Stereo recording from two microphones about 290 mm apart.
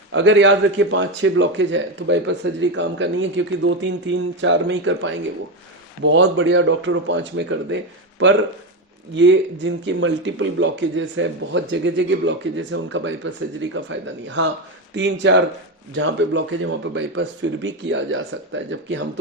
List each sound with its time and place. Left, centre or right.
0.1 s a man's voice: right
9.1 s a man's voice: right